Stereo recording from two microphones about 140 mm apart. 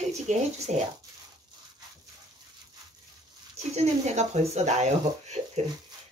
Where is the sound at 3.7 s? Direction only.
50° right (ahead or behind).